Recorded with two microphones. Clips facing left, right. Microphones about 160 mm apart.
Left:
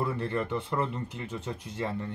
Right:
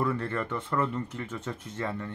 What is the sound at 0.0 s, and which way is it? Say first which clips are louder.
Speech: right 1 dB; 15° left (ahead or behind).